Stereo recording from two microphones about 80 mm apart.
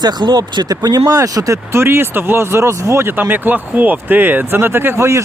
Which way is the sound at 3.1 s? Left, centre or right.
Right.